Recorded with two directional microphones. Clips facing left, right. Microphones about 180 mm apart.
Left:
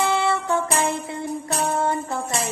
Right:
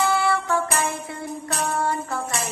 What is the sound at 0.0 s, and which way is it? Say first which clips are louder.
Music: even; 20° left (ahead or behind).